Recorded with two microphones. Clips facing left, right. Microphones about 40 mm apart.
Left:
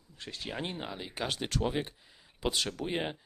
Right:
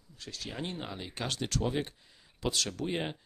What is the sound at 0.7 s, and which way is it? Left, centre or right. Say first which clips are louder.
Speech: left 1 dB; centre.